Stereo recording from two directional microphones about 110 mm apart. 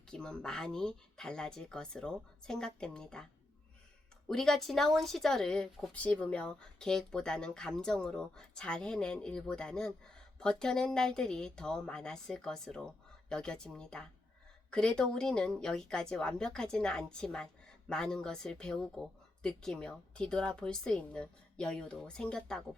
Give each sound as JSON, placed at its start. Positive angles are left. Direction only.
{"t": 0.1, "sound": "a woman's voice", "side_deg": 5}
{"t": 4.3, "sound": "a woman's voice", "side_deg": 5}